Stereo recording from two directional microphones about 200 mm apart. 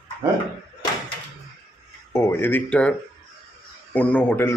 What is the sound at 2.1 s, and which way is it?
Speech, 10° left (ahead or behind).